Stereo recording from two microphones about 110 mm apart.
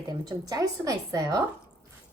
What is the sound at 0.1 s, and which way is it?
A woman's voice, 35° right (ahead or behind).